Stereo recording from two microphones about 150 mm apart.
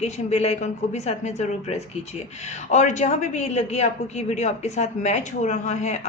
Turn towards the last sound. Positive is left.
turn(degrees=50)  # may be behind; listen again after turning